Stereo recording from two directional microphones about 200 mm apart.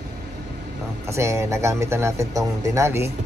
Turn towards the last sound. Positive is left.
turn(degrees=-15)  # may be behind; listen again after turning